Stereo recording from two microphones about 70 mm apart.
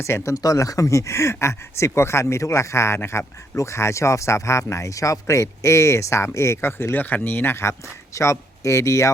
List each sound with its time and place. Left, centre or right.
0.0 s speech: left
0.4 s speech: left